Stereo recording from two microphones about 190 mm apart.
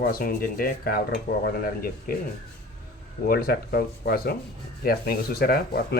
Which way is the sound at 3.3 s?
55° left (ahead or behind).